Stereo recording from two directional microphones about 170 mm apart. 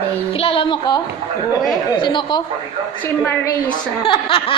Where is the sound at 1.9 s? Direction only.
25° left (ahead or behind).